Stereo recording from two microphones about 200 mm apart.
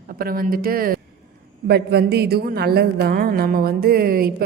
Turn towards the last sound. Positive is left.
turn(degrees=-50)  # may be behind; listen again after turning